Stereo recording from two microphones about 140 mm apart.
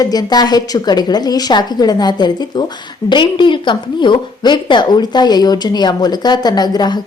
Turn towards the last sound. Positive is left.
turn(degrees=30)  # may be behind; listen again after turning